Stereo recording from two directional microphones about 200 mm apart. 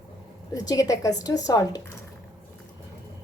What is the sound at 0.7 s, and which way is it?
A woman's voice, 15° left (ahead or behind).